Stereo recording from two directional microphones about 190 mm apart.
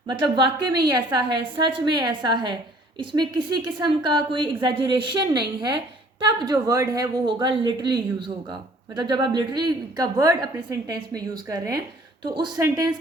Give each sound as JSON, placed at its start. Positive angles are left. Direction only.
{"t": 0.1, "sound": "a woman's voice", "side_deg": -25}